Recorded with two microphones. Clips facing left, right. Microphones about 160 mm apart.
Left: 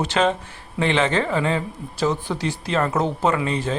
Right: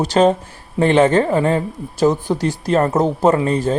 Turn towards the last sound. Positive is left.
turn(degrees=-40)  # may be behind; listen again after turning